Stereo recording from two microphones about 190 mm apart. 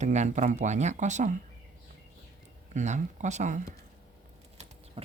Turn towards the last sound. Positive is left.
turn(degrees=-30)  # may be behind; listen again after turning